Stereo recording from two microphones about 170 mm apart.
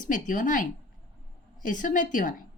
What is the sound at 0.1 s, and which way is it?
A woman's voice, 50° left (ahead or behind).